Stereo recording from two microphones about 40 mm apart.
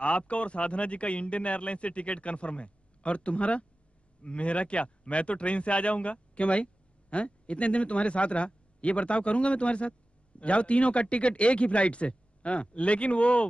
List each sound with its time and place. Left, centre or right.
0.0 s speech: left